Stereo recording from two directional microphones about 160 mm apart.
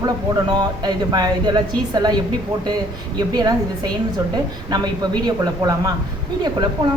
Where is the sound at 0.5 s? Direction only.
25° right (ahead or behind).